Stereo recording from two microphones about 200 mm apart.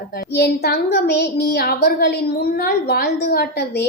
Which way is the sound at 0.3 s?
50° left (ahead or behind).